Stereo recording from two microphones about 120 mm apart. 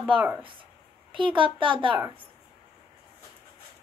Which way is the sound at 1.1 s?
45° right (ahead or behind).